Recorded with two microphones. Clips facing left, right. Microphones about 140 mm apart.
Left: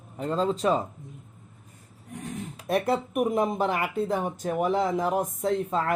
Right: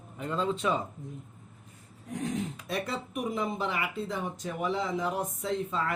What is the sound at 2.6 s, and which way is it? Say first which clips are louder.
Speech: left 9 dB; 55° left (ahead or behind).